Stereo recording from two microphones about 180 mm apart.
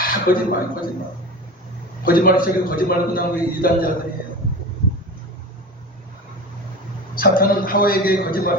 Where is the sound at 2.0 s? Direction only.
55° left (ahead or behind).